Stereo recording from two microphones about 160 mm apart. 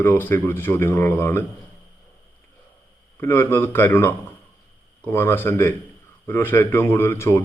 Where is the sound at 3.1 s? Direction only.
15° left (ahead or behind).